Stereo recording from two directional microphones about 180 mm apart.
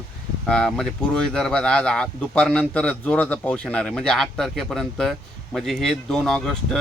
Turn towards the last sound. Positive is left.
turn(degrees=5)  # may be behind; listen again after turning